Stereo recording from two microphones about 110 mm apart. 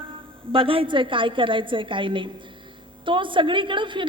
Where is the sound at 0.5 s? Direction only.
55° right (ahead or behind).